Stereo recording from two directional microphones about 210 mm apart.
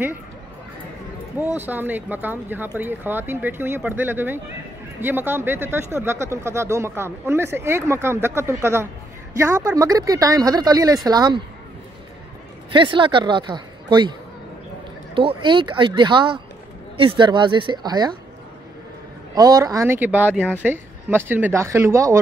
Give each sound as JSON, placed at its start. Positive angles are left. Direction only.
{"t": 1.4, "sound": "a woman's voice", "side_deg": -10}
{"t": 12.7, "sound": "a woman's voice", "side_deg": -25}
{"t": 15.1, "sound": "a woman's voice", "side_deg": -25}
{"t": 19.3, "sound": "speech", "side_deg": -15}